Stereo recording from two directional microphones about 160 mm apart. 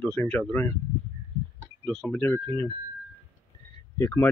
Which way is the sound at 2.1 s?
15° left (ahead or behind).